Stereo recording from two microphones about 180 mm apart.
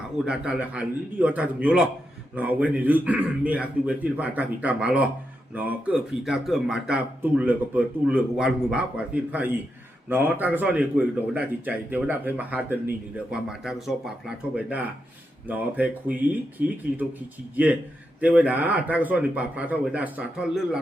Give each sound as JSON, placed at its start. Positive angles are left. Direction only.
{"t": 0.3, "sound": "a man's voice", "side_deg": -5}
{"t": 16.6, "sound": "speech", "side_deg": -50}
{"t": 17.5, "sound": "a man's voice", "side_deg": -10}